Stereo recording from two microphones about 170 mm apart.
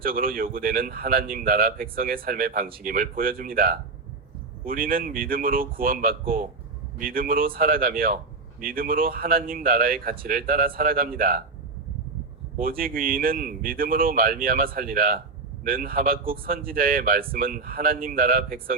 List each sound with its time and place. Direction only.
0.0 s speech: 55° right (ahead or behind)
12.5 s speech: 55° right (ahead or behind)